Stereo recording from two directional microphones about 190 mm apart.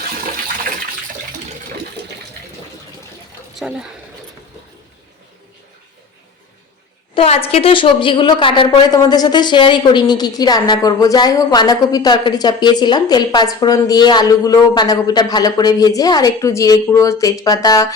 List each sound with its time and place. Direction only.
3.5 s speech: 5° right (ahead or behind)
7.1 s a woman's voice: 30° left (ahead or behind)